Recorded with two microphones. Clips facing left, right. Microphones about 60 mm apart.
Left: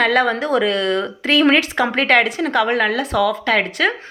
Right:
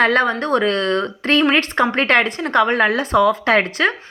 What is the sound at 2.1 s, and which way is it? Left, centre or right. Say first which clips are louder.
Speech: left 3 dB; centre.